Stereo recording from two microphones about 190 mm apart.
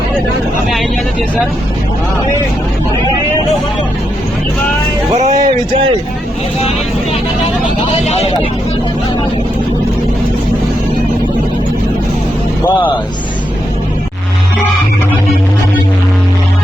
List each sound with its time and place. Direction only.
5.1 s music: 40° right (ahead or behind)
8.0 s speech: 35° left (ahead or behind)